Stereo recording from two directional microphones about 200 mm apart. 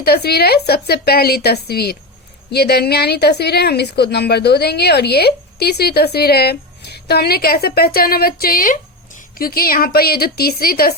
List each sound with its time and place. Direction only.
0.0 s a woman's voice: 50° left (ahead or behind)